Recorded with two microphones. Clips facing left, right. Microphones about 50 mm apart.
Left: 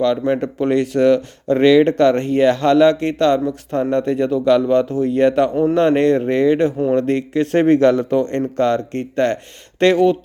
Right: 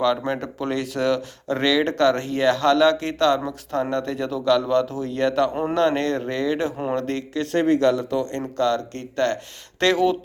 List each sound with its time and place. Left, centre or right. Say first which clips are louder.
0.0 s speech: left 5 dB; centre
7.4 s speech: left 5 dB; left
9.8 s speech: left 6 dB; centre